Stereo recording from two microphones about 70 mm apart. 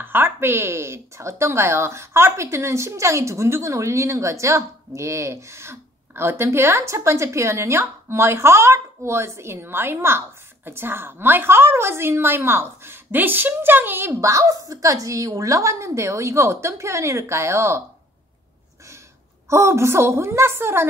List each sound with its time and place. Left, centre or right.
0.0 s speech: right
14.2 s a woman's voice: right
19.5 s speech: right